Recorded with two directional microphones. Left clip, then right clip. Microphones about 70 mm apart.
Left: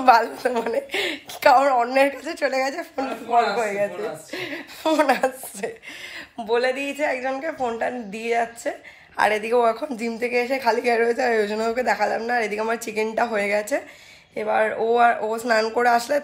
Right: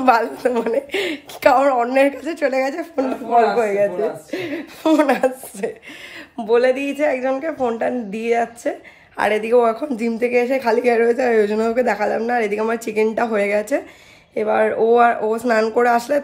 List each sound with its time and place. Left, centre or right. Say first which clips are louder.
0.0 s a woman's voice: right 1 dB; right
4.3 s a woman's voice: right 5 dB; right
5.0 s a woman's voice: right 3 dB; right
6.3 s speech: right 6 dB; right
7.8 s a woman's voice: right 5 dB; right
14.3 s speech: right 4 dB; right
15.1 s a woman's voice: right 4 dB; right